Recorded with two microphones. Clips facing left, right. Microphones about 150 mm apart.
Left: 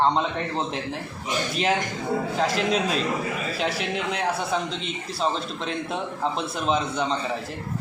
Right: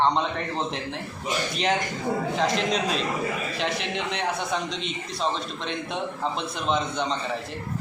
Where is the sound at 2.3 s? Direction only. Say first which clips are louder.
Left 2 dB; 5° left (ahead or behind).